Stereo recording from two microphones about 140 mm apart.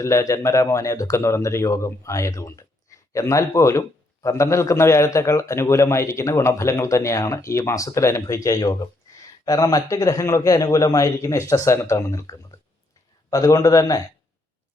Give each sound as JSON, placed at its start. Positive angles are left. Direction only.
{"t": 0.0, "sound": "a man's voice", "side_deg": 20}